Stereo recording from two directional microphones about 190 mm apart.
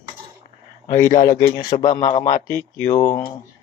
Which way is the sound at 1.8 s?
40° left (ahead or behind).